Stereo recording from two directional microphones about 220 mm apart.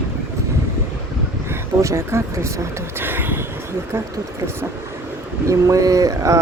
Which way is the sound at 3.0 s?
10° right (ahead or behind).